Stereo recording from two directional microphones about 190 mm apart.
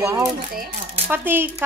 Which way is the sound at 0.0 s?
15° right (ahead or behind).